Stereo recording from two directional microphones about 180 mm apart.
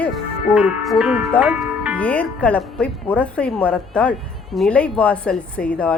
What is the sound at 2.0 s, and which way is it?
Speech, 10° left (ahead or behind).